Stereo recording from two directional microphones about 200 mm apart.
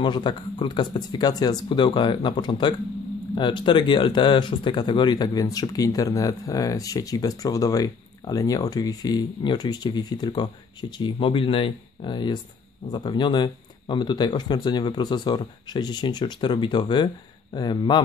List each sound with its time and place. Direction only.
0.0 s speech: 20° left (ahead or behind)